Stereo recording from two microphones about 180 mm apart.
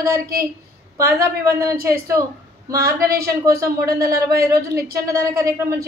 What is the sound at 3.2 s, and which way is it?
A woman's voice, 20° right (ahead or behind).